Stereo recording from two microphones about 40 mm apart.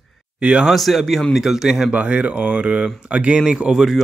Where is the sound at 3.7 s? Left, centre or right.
Centre.